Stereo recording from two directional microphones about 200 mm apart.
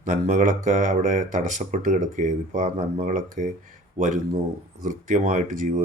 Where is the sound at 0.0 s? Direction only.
35° right (ahead or behind).